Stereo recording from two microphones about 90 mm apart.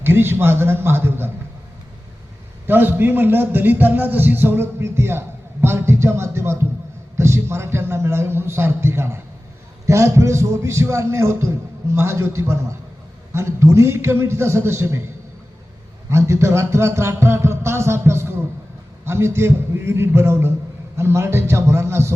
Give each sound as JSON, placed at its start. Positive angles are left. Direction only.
{"t": 0.0, "sound": "a man's voice", "side_deg": -25}
{"t": 2.6, "sound": "a man's voice", "side_deg": -25}